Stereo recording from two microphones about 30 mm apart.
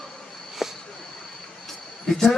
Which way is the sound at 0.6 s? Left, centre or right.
Centre.